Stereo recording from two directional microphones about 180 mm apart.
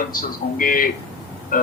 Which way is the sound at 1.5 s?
50° left (ahead or behind).